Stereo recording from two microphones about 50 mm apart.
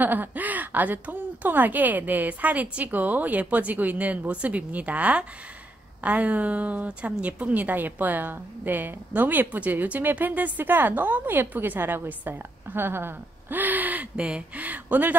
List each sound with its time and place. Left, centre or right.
0.0 s a woman's voice: right
14.1 s a woman's voice: right